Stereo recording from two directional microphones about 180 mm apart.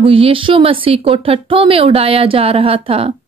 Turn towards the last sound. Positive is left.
turn(degrees=-30)  # may be behind; listen again after turning